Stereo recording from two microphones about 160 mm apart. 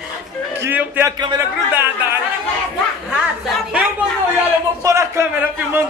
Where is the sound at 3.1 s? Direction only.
5° right (ahead or behind).